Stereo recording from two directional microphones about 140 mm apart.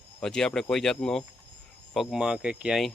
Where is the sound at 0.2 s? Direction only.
5° left (ahead or behind).